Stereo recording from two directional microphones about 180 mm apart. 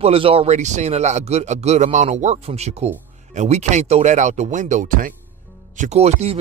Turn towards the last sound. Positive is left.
turn(degrees=-35)  # may be behind; listen again after turning